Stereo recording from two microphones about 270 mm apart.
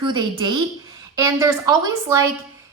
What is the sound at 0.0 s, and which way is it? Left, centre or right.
A woman's voice, centre.